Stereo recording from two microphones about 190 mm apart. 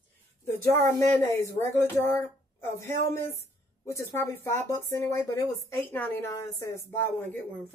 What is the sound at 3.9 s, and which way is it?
Speech, 15° left (ahead or behind).